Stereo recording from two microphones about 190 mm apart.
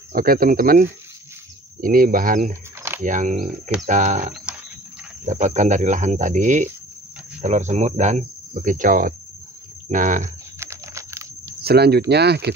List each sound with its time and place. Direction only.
0.1 s speech: 50° right (ahead or behind)
10.6 s typing: 15° right (ahead or behind)
11.6 s speech: 55° right (ahead or behind)